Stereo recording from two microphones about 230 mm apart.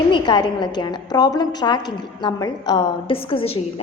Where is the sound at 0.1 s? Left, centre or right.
Centre.